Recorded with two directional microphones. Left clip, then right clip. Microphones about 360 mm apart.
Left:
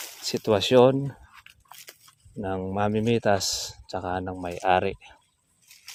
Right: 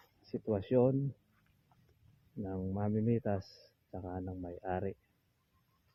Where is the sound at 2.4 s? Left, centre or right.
Centre.